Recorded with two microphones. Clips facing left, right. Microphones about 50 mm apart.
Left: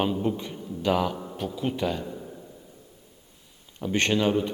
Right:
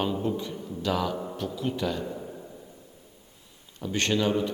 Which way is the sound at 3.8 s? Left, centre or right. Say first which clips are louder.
Left 2 dB; left.